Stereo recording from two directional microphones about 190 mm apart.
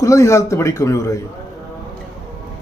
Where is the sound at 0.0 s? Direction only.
15° left (ahead or behind).